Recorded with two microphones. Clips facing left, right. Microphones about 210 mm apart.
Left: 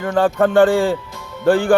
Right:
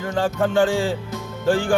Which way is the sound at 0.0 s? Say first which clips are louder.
Left 6 dB; 60° left (ahead or behind).